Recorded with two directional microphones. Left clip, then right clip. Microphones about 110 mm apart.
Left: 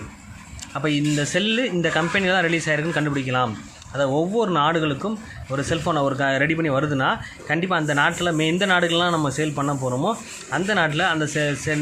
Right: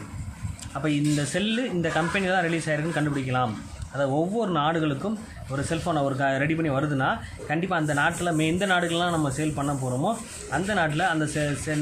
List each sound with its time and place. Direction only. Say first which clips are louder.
0.7 s speech: left 3 dB; 20° left (ahead or behind)